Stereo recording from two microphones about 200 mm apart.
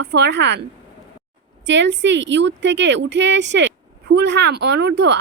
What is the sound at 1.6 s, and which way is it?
Speech, 65° right (ahead or behind).